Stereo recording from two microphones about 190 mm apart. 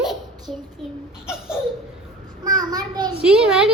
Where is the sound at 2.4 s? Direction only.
20° right (ahead or behind).